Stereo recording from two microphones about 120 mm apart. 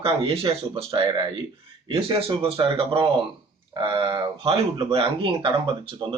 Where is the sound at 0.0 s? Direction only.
45° right (ahead or behind).